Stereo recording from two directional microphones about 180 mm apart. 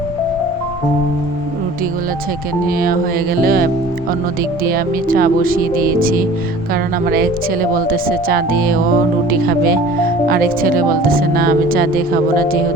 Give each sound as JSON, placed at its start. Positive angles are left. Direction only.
{"t": 2.6, "sound": "speech", "side_deg": -55}
{"t": 10.2, "sound": "speech", "side_deg": -55}